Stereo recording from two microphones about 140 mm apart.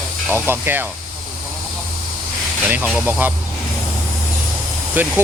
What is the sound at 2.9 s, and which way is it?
Speech, 10° right (ahead or behind).